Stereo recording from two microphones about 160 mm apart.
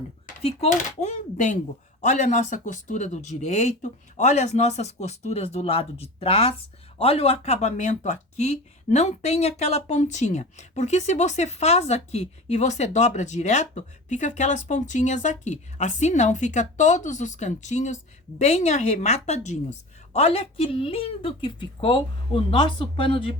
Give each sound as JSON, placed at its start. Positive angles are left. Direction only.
{"t": 0.4, "sound": "speech", "side_deg": 45}